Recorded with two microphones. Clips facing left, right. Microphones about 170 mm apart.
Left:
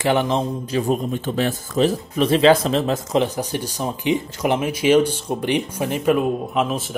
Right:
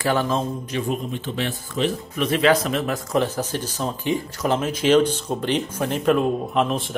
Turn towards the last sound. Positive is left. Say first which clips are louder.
# even
turn(degrees=5)  # may be behind; listen again after turning